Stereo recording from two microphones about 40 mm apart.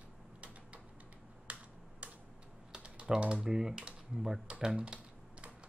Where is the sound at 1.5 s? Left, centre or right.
Right.